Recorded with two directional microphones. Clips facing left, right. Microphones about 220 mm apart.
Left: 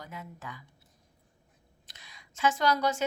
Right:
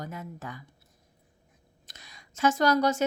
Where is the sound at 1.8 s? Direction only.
45° right (ahead or behind).